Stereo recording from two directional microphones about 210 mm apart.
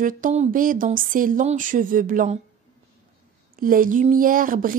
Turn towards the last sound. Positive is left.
turn(degrees=-40)  # may be behind; listen again after turning